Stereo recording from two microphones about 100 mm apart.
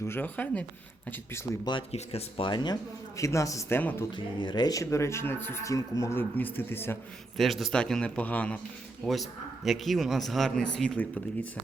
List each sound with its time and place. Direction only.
0.0 s speech: 20° left (ahead or behind)
2.4 s speech: 50° left (ahead or behind)
3.2 s a man's voice: 30° left (ahead or behind)
3.8 s speech: 20° left (ahead or behind)
4.1 s speech: 50° left (ahead or behind); by 7.0 s 20° left (ahead or behind)
7.3 s speech: centre (ahead or behind)